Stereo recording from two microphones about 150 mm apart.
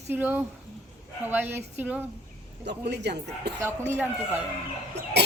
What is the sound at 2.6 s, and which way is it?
Speech, 90° right.